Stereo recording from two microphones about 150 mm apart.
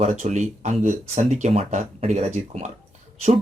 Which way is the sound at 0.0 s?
50° right (ahead or behind).